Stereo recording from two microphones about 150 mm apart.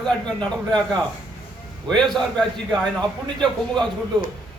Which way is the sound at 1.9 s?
Centre (ahead or behind).